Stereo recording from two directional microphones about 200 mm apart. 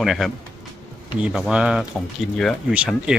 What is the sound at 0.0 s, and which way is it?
Speech, centre (ahead or behind).